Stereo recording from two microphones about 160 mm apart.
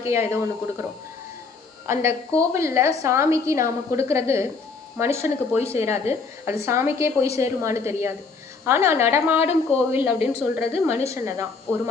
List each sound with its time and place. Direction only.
0.0 s a woman's voice: 15° right (ahead or behind)
1.9 s a woman's voice: 15° right (ahead or behind)